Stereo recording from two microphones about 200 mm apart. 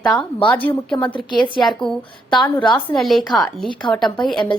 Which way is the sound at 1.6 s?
Centre (ahead or behind).